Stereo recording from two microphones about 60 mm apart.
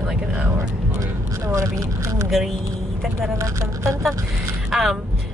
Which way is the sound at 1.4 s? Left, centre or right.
Right.